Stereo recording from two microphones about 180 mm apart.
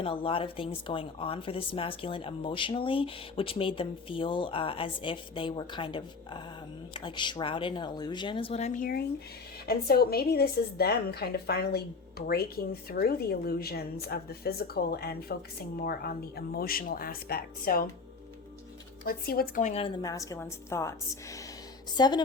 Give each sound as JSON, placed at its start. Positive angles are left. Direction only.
{"t": 0.0, "sound": "a woman's voice", "side_deg": 30}
{"t": 19.0, "sound": "a woman's voice", "side_deg": 55}
{"t": 19.7, "sound": "a woman's voice", "side_deg": 30}
{"t": 21.9, "sound": "speech", "side_deg": 25}